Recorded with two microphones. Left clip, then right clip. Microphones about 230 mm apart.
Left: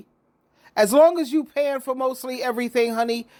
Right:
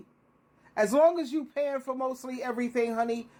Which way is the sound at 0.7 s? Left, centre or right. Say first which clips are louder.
Left 7 dB; left.